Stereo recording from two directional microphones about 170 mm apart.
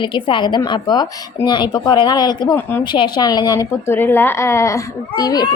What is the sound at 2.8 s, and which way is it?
A woman's voice, 25° left (ahead or behind).